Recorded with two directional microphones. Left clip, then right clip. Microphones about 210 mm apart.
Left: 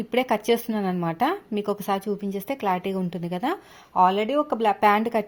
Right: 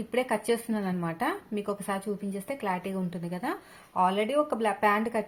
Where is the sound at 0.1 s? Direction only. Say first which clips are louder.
Left 5 dB; 50° left (ahead or behind).